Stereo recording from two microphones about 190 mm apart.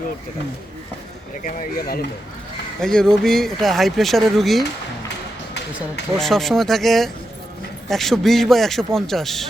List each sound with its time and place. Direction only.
1.5 s speech: 50° left (ahead or behind)
2.8 s speech: 5° left (ahead or behind)
6.1 s speech: centre (ahead or behind)